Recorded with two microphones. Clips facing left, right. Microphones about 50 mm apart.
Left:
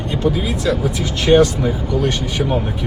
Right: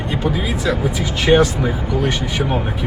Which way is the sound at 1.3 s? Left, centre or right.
Centre.